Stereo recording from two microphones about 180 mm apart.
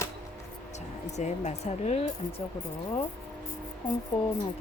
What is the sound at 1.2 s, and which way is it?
Speech, 40° left (ahead or behind).